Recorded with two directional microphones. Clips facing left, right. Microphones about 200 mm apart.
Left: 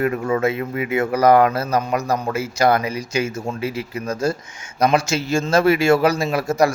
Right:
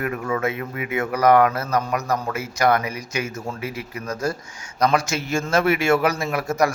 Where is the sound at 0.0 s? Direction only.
25° left (ahead or behind).